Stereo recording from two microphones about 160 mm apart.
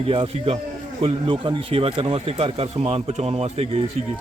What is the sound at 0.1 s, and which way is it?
Speech, 35° right (ahead or behind).